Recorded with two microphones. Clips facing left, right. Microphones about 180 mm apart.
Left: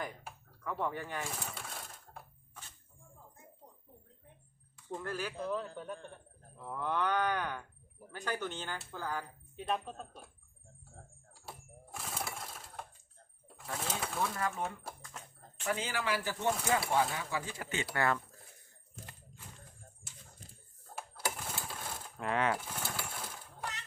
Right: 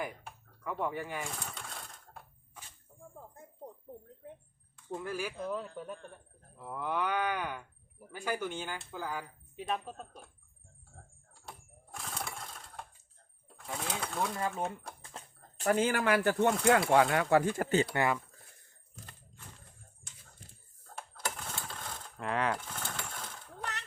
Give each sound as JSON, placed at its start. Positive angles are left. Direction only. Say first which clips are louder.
{"t": 0.6, "sound": "speech", "louder": "right 2 dB", "side_deg": -10}
{"t": 1.2, "sound": "coin", "louder": "even", "side_deg": 0}
{"t": 4.9, "sound": "speech", "louder": "right 2 dB", "side_deg": -10}
{"t": 11.3, "sound": "lawn mower", "louder": "left 1 dB", "side_deg": 5}
{"t": 13.6, "sound": "speech", "louder": "right 1 dB", "side_deg": 0}
{"t": 14.2, "sound": "speech", "louder": "right 2 dB", "side_deg": -25}
{"t": 15.0, "sound": "a sound", "louder": "right 1 dB", "side_deg": -35}
{"t": 16.9, "sound": "speech", "louder": "right 8 dB", "side_deg": -70}
{"t": 17.9, "sound": "speech", "louder": "right 2 dB", "side_deg": -15}
{"t": 20.9, "sound": "coin", "louder": "left 1 dB", "side_deg": 10}